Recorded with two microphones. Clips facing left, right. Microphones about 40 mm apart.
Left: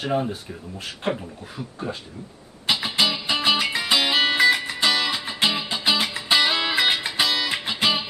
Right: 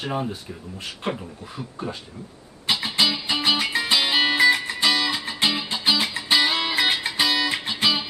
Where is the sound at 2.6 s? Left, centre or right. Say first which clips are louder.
Even; centre.